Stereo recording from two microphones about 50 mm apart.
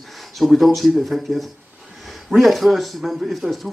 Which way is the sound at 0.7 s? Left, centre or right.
Centre.